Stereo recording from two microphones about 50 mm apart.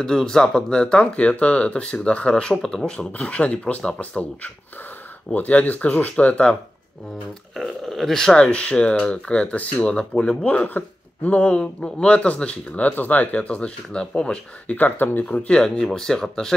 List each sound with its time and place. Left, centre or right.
0.0 s speech: centre
2.5 s speech: centre
3.3 s speech: left
7.9 s speech: centre
14.7 s speech: left
15.2 s speech: left
15.8 s speech: centre